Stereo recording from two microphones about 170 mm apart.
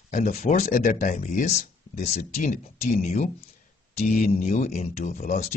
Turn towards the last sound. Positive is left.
turn(degrees=50)  # may be behind; listen again after turning